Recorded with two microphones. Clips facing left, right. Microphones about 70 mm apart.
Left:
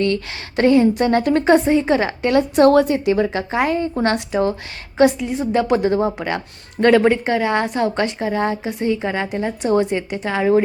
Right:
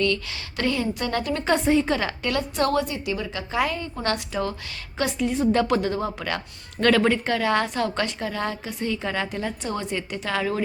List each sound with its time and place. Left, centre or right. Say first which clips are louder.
0.0 s a woman's voice: left 4 dB; left
1.6 s a woman's voice: left 3 dB; centre
1.9 s a woman's voice: left 8 dB; left
3.5 s speech: left 7 dB; left
5.1 s a woman's voice: left 2 dB; centre
5.7 s speech: left 7 dB; left